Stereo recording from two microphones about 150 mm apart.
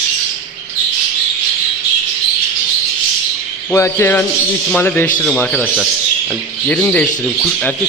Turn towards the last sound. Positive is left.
turn(degrees=10)  # may be behind; listen again after turning